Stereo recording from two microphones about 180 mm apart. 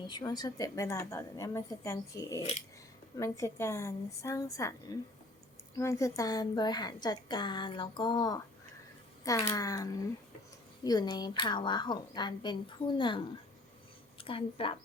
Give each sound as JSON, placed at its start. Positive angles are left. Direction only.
{"t": 0.1, "sound": "speech", "side_deg": 25}
{"t": 2.4, "sound": "scissors", "side_deg": 35}
{"t": 3.2, "sound": "a woman's voice", "side_deg": 15}